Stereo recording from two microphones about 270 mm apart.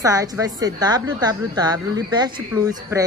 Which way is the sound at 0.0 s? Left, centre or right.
Centre.